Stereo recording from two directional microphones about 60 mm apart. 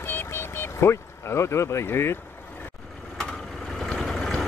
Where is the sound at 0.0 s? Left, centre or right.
Left.